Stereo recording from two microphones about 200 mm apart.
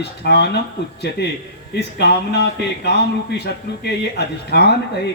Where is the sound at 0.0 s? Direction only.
55° left (ahead or behind).